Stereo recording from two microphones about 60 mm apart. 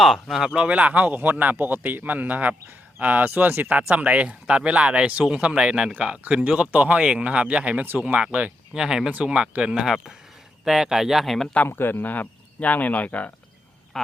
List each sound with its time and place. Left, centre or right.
0.0 s speech: centre
0.5 s speech: right
5.9 s speech: right
8.7 s speech: centre
11.7 s speech: left
13.9 s speech: centre